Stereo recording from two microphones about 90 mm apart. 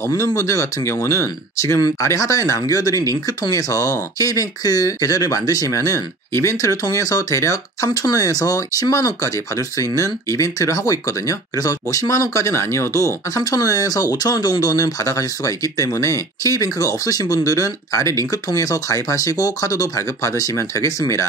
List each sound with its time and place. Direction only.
0.1 s speech: 40° left (ahead or behind)